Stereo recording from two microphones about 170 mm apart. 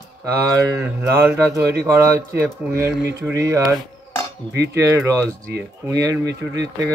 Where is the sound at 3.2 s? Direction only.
20° right (ahead or behind).